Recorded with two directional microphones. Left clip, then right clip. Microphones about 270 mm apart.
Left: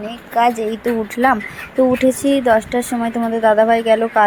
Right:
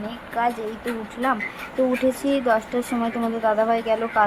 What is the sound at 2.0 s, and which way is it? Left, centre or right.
A woman's voice, centre.